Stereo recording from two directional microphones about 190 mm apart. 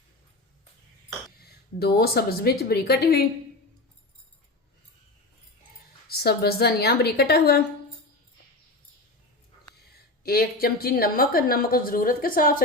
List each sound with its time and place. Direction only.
1.8 s a woman's voice: 55° left (ahead or behind)
6.1 s a woman's voice: 55° left (ahead or behind)
10.2 s a woman's voice: 55° left (ahead or behind)